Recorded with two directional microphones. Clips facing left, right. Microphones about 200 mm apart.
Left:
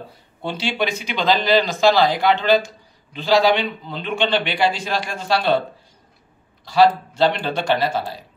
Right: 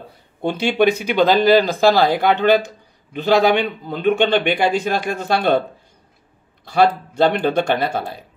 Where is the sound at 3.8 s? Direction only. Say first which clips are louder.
Right 6 dB; 50° right (ahead or behind).